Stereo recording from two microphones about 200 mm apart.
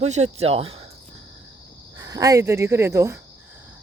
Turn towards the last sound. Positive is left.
turn(degrees=-15)  # may be behind; listen again after turning